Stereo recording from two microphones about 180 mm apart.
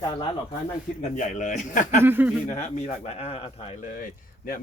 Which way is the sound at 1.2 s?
45° left (ahead or behind).